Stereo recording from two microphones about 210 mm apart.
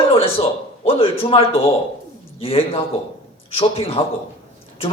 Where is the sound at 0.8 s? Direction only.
25° left (ahead or behind).